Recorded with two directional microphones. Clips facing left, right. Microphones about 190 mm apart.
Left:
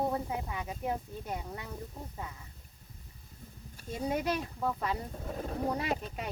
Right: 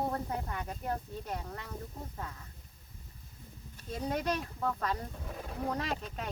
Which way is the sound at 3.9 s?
10° left (ahead or behind).